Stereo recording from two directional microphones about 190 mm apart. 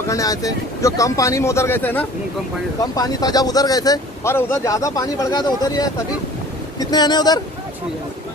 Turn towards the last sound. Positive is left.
turn(degrees=20)  # may be behind; listen again after turning